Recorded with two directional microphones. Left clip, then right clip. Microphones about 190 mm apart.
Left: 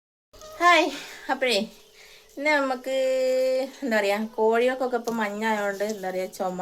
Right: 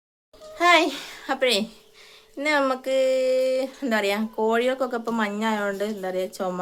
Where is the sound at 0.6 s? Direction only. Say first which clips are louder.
Right 1 dB; 20° right (ahead or behind).